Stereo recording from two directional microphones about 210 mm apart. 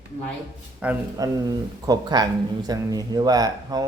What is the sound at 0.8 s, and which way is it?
A man's voice, 10° right (ahead or behind).